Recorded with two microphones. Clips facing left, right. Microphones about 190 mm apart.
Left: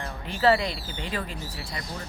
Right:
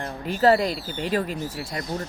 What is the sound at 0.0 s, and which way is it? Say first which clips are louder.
Speech: right 3 dB; 45° right (ahead or behind).